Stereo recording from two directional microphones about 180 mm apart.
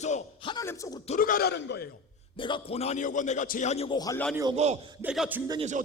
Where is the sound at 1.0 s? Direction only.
50° left (ahead or behind); by 1.9 s 65° left (ahead or behind).